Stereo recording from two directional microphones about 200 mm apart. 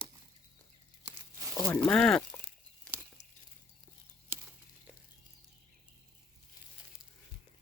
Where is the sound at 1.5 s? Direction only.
10° left (ahead or behind).